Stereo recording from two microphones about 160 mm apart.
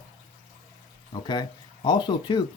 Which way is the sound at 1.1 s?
25° left (ahead or behind).